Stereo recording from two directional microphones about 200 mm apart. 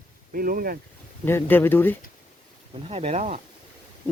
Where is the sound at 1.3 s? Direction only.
10° left (ahead or behind).